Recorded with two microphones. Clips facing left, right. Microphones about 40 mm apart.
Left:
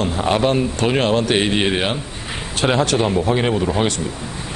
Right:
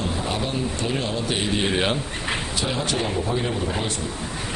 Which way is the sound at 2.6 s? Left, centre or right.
Left.